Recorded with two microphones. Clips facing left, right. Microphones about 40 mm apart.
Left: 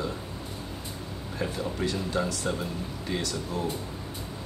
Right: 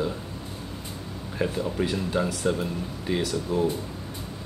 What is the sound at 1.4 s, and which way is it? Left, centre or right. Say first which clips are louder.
Speech: right 4 dB; centre.